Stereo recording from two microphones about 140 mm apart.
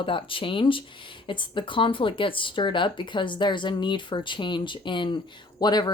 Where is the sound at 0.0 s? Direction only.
40° left (ahead or behind).